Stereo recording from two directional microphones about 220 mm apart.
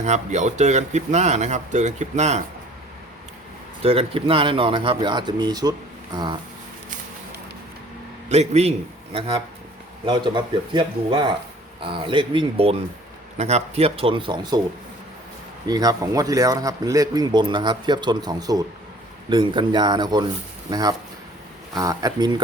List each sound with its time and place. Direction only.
0.0 s speech: 30° right (ahead or behind)
3.8 s speech: 25° right (ahead or behind)
8.3 s speech: 30° right (ahead or behind)
15.6 s speech: 15° right (ahead or behind)